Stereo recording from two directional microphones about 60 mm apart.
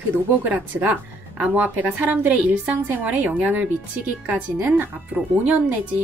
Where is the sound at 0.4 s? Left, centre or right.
Right.